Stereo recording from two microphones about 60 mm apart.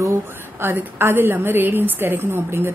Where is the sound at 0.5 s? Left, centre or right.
Right.